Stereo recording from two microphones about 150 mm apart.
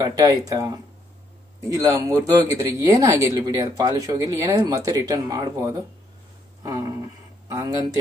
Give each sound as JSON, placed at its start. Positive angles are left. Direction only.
{"t": 0.0, "sound": "speech", "side_deg": -25}
{"t": 6.6, "sound": "a sound", "side_deg": -25}
{"t": 7.4, "sound": "speech", "side_deg": -20}